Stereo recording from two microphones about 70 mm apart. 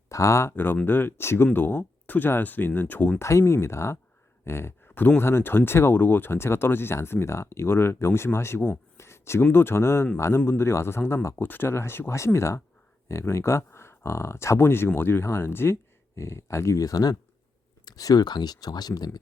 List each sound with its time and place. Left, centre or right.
0.1 s speech: left
0.5 s speech: left
3.2 s speech: left
16.8 s speech: left